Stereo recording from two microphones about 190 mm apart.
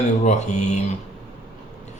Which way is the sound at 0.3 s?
35° left (ahead or behind).